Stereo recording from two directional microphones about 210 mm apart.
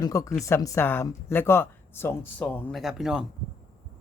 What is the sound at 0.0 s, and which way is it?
Speech, 15° left (ahead or behind).